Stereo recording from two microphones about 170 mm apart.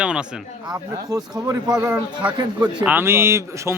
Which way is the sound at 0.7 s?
20° right (ahead or behind).